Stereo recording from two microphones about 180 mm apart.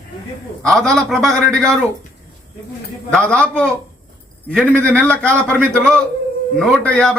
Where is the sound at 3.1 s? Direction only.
5° left (ahead or behind).